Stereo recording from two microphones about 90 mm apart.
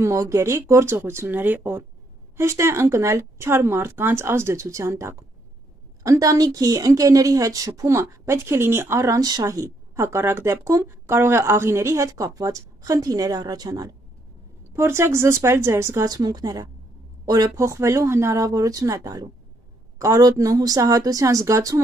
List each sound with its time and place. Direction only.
0.0 s speech: 35° right (ahead or behind)
9.2 s speech: 40° right (ahead or behind)
14.7 s speech: 30° right (ahead or behind)
16.1 s a woman's voice: 45° right (ahead or behind)
17.6 s speech: 30° right (ahead or behind)
20.0 s speech: 40° right (ahead or behind)